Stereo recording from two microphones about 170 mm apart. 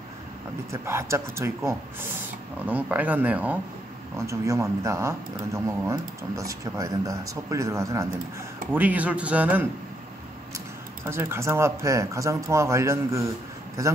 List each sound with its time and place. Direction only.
0.7 s speech: 15° right (ahead or behind)
11.1 s a man's voice: 15° right (ahead or behind)